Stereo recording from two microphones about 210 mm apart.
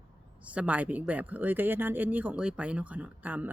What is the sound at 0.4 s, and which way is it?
Speech, 5° right (ahead or behind).